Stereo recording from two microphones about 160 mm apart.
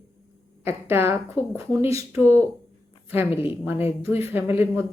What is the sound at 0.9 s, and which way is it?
Speech, 15° right (ahead or behind).